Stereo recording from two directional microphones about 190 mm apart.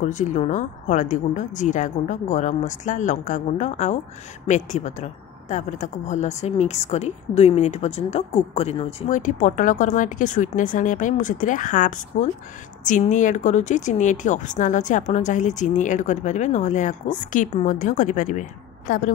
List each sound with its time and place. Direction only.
0.1 s a woman's voice: 40° left (ahead or behind)